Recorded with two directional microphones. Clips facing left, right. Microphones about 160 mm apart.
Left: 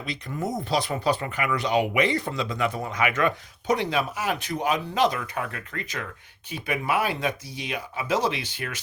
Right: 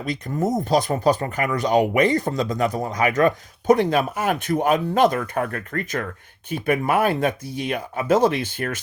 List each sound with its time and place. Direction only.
0.0 s speech: 45° right (ahead or behind)